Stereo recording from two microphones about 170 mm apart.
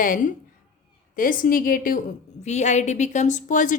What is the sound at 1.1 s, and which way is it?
Speech, 55° left (ahead or behind).